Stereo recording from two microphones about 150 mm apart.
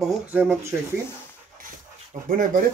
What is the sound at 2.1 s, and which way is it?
Speech, 55° right (ahead or behind).